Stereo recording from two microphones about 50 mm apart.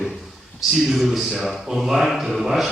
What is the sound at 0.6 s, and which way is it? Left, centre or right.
A man's voice, centre.